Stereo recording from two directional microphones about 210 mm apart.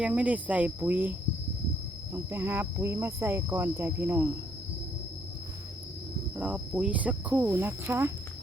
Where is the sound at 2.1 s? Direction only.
10° right (ahead or behind).